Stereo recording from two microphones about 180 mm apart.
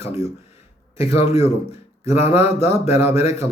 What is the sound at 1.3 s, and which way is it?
A man's voice, 35° left (ahead or behind).